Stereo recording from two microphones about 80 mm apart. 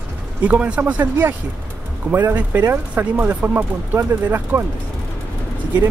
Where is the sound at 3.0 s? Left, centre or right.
Centre.